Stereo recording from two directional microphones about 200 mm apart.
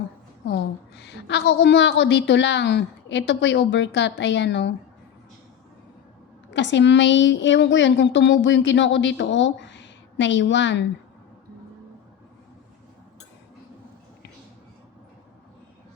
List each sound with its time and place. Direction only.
0.4 s a woman's voice: 60° left (ahead or behind)
6.5 s a woman's voice: 65° left (ahead or behind)